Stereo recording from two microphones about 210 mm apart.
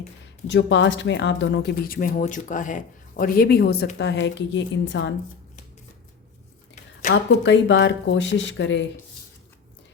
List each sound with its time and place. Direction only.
0.4 s speech: 60° left (ahead or behind)
7.1 s speech: 60° left (ahead or behind)